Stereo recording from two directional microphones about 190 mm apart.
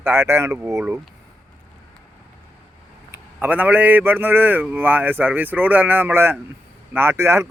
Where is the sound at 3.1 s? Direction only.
10° right (ahead or behind).